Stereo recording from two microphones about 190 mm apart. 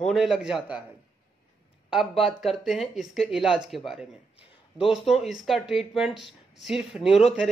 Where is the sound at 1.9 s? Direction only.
Centre (ahead or behind).